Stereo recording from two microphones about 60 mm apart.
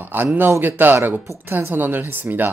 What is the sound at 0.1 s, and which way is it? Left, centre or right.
Speech, right.